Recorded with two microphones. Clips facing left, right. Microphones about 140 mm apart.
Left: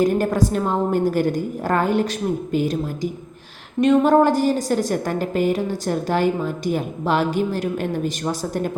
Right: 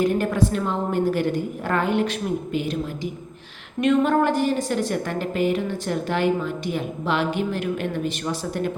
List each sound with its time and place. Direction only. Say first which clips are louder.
0.0 s a woman's voice: left 2 dB; 40° left (ahead or behind)